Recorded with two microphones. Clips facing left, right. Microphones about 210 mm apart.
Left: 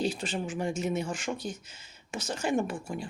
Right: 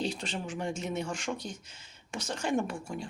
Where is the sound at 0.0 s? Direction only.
5° left (ahead or behind).